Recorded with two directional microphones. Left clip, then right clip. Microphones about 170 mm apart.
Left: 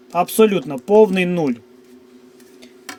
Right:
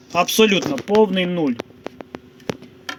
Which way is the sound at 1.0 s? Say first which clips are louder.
Left 3 dB; 20° left (ahead or behind).